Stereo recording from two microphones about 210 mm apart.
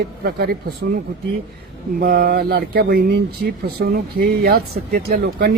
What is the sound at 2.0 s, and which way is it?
Speech, 45° right (ahead or behind).